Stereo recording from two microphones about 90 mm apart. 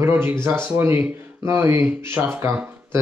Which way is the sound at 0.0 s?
25° right (ahead or behind).